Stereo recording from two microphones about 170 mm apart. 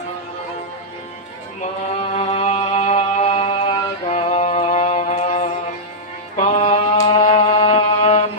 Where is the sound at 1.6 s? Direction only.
40° left (ahead or behind).